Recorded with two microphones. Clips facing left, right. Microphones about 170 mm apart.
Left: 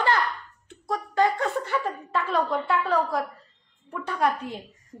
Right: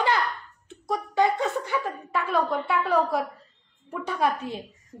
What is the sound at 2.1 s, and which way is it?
Speech, 5° right (ahead or behind).